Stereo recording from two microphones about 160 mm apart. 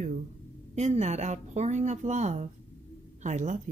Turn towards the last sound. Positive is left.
turn(degrees=-50)  # may be behind; listen again after turning